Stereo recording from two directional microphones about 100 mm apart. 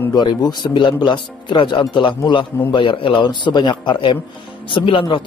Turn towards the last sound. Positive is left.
turn(degrees=55)  # may be behind; listen again after turning